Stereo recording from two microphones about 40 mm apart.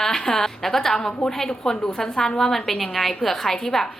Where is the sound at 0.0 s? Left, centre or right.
Centre.